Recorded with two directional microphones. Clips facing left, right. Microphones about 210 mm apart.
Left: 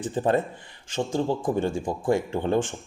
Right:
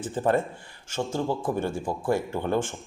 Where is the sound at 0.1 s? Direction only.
20° left (ahead or behind).